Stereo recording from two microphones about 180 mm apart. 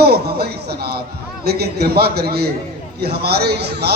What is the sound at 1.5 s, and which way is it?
A woman's voice, 60° right (ahead or behind).